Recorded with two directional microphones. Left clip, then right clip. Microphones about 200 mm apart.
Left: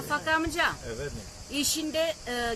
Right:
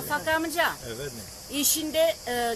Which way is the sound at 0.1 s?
35° left (ahead or behind).